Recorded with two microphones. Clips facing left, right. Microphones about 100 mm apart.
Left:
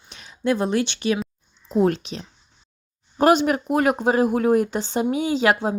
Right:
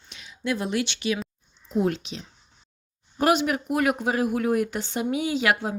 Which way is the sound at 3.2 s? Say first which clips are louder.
Left 5 dB; 35° left (ahead or behind).